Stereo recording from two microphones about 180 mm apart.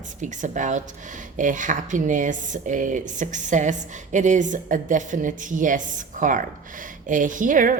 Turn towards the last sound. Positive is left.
turn(degrees=-45)  # may be behind; listen again after turning